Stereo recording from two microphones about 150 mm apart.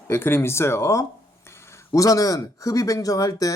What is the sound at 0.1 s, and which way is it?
Speech, 15° left (ahead or behind).